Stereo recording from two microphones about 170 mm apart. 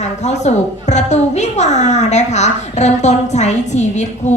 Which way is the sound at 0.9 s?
40° left (ahead or behind).